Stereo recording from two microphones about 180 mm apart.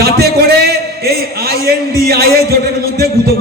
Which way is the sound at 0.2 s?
60° right (ahead or behind).